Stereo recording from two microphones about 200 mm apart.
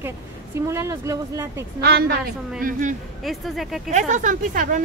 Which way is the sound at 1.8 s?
50° right (ahead or behind).